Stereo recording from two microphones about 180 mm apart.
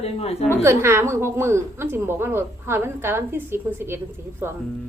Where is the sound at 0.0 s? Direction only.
35° left (ahead or behind).